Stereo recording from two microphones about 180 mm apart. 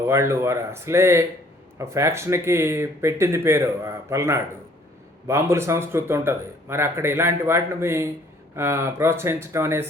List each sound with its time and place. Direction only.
0.1 s speech: 15° right (ahead or behind)